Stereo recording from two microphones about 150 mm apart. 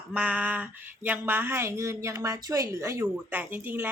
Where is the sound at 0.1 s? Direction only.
10° right (ahead or behind).